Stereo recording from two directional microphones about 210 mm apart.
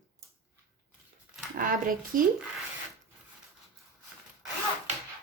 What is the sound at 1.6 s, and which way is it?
Speech, 40° right (ahead or behind).